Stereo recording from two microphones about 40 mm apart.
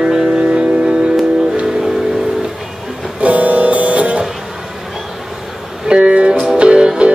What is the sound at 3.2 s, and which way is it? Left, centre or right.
Music, right.